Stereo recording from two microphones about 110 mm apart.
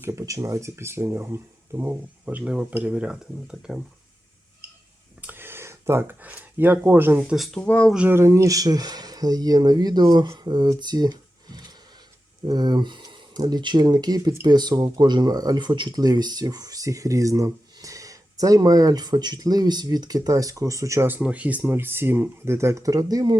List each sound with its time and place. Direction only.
0.0 s speech: 30° right (ahead or behind); by 3.8 s 5° right (ahead or behind)
5.2 s speech: 20° right (ahead or behind)
7.3 s speech: centre (ahead or behind)
7.9 s speech: 15° right (ahead or behind)
8.2 s speech: 30° right (ahead or behind)
21.1 s speech: 10° right (ahead or behind); by 23.4 s 35° right (ahead or behind)